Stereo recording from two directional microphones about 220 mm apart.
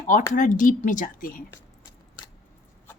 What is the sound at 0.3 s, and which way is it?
A woman's voice, 35° left (ahead or behind).